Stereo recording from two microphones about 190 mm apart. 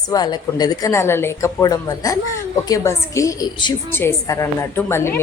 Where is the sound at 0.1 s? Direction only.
20° left (ahead or behind).